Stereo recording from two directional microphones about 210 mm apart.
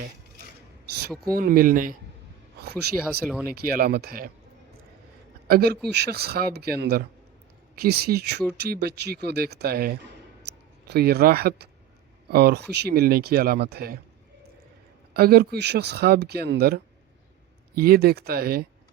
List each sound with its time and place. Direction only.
1.3 s speech: 45° right (ahead or behind)
3.1 s speech: 5° right (ahead or behind)
3.4 s speech: 45° right (ahead or behind)
5.5 s speech: 45° right (ahead or behind)
15.1 s speech: 45° right (ahead or behind)